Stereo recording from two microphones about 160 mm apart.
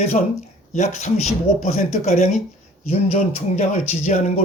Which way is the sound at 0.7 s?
50° left (ahead or behind).